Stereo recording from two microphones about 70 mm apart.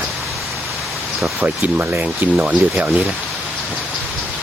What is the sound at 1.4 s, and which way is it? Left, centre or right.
Speech, right.